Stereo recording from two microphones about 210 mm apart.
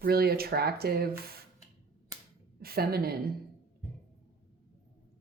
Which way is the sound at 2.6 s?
45° right (ahead or behind).